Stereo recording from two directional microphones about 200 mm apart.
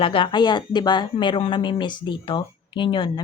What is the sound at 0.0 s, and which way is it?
Speech, 25° left (ahead or behind).